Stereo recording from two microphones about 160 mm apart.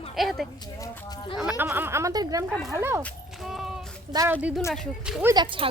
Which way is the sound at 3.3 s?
Centre (ahead or behind).